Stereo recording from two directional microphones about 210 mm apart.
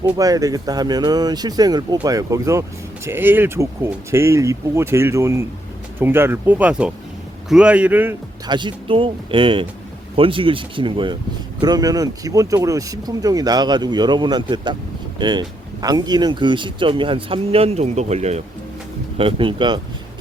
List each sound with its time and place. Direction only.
0.0 s speech: 15° right (ahead or behind)
8.4 s speech: 20° right (ahead or behind)